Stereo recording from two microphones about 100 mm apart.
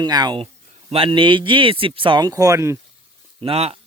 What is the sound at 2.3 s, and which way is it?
Speech, 35° right (ahead or behind).